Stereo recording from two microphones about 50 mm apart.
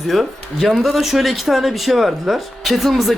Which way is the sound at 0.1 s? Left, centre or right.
Centre.